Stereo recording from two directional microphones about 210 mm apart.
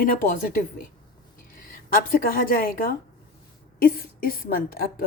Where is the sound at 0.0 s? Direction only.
40° left (ahead or behind).